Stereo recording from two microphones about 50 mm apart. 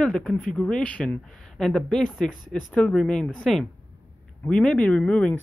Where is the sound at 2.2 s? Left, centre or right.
Left.